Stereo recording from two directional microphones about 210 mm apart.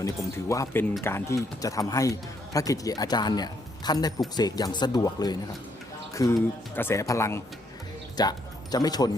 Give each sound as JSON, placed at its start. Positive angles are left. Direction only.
{"t": 0.0, "sound": "speech", "side_deg": 15}